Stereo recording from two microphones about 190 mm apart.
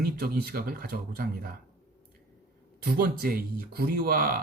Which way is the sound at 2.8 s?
50° right (ahead or behind).